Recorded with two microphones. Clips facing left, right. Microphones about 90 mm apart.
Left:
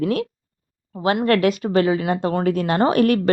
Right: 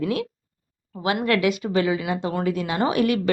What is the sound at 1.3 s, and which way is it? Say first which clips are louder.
A woman's voice: left 3 dB; 45° left (ahead or behind).